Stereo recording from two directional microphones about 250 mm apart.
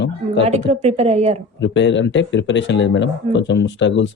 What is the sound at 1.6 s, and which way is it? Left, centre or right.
Speech, left.